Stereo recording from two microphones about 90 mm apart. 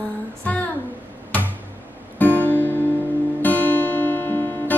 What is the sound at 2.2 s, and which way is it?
Music, 20° left (ahead or behind).